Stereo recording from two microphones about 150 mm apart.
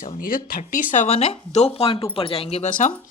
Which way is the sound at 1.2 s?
40° left (ahead or behind).